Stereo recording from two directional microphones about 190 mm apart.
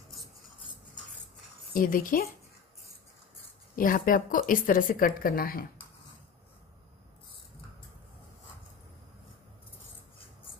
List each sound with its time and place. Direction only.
1.7 s speech: 45° left (ahead or behind)
3.7 s speech: 45° left (ahead or behind)